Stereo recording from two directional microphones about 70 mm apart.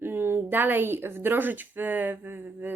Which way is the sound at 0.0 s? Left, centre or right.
Right.